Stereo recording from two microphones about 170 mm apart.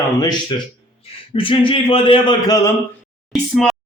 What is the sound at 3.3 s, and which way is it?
Speech, 5° left (ahead or behind).